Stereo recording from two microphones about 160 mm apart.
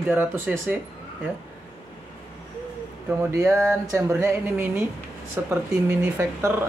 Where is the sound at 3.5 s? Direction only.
15° right (ahead or behind).